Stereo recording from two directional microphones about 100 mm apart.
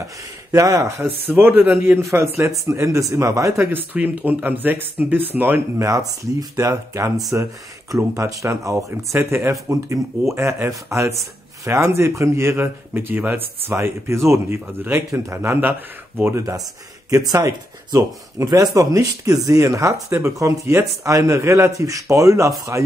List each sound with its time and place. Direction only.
0.5 s speech: 35° right (ahead or behind)
6.5 s speech: 30° right (ahead or behind)